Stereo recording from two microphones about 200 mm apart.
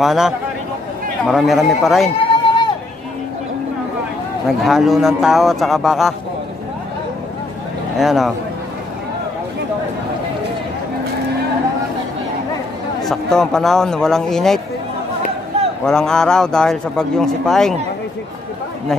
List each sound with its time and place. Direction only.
0.0 s a man's voice: centre (ahead or behind)
2.2 s run: 25° left (ahead or behind)
4.5 s a man's voice: centre (ahead or behind)
8.0 s a man's voice: centre (ahead or behind)
13.0 s a man's voice: centre (ahead or behind)
15.8 s a man's voice: 5° left (ahead or behind)